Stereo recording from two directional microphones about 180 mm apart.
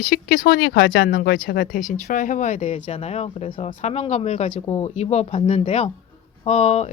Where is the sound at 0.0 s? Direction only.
50° left (ahead or behind); by 1.0 s 85° left.